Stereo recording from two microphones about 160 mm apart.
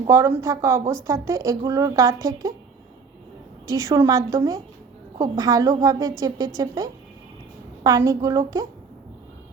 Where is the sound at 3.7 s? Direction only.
20° right (ahead or behind).